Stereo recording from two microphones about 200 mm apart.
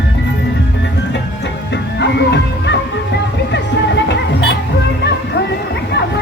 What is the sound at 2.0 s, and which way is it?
Music, 60° left (ahead or behind).